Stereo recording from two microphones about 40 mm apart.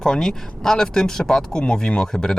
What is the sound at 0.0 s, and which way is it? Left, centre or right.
Speech, centre.